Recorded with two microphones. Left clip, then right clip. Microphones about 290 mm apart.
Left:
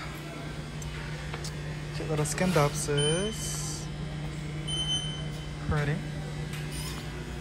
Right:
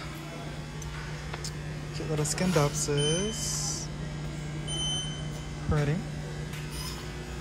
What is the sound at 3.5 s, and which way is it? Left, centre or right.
Music, right.